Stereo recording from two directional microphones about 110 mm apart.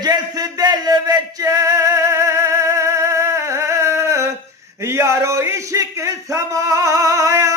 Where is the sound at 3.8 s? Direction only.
25° right (ahead or behind).